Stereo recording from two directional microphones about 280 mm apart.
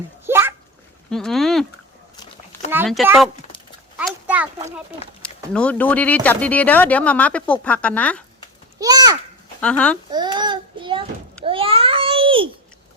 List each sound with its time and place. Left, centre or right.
0.3 s a sound: centre
1.1 s speech: centre
2.6 s a child's voice: centre
8.8 s a child's voice: centre
9.6 s speech: centre
10.1 s a child's voice: centre
11.4 s babbling: centre